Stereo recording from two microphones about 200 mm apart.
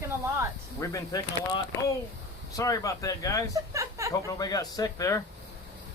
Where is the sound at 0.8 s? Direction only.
20° left (ahead or behind).